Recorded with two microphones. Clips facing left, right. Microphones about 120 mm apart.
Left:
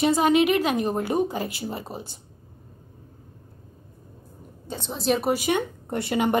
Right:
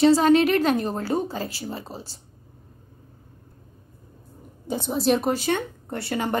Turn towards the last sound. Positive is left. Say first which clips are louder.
# left 3 dB
turn(degrees=20)  # may be behind; listen again after turning